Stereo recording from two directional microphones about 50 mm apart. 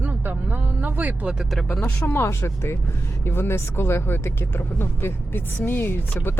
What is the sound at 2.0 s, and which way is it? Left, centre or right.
Speech, left.